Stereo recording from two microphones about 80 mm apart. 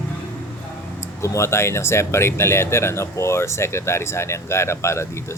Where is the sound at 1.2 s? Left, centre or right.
Left.